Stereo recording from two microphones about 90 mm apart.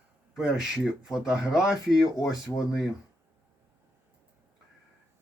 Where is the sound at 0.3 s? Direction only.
5° right (ahead or behind).